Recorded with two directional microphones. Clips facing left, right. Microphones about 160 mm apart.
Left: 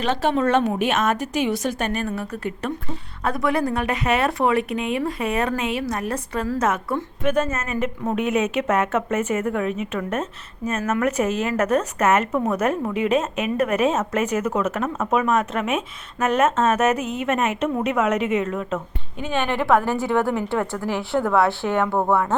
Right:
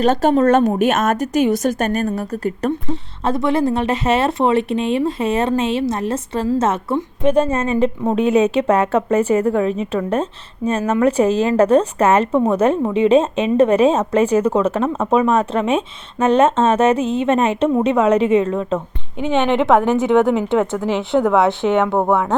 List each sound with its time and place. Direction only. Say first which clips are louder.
0.0 s a woman's voice: right 7 dB; 45° right (ahead or behind)
3.2 s a woman's voice: right 5 dB; 25° right (ahead or behind)
19.2 s a woman's voice: right 7 dB; 20° right (ahead or behind)